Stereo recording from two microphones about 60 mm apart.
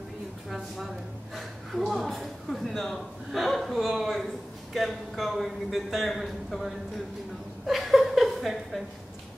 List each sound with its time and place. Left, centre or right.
0.5 s a woman's voice: centre
7.6 s chuckle: centre